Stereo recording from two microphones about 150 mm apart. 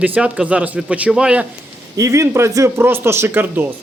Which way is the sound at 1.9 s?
20° right (ahead or behind).